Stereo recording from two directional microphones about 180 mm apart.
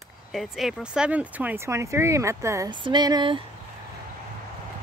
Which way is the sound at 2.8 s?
25° right (ahead or behind).